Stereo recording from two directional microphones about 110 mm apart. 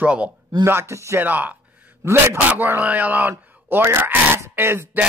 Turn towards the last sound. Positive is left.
turn(degrees=-20)  # may be behind; listen again after turning